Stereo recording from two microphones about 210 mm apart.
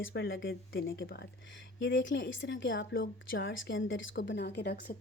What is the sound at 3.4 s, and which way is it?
Speech, 60° left (ahead or behind).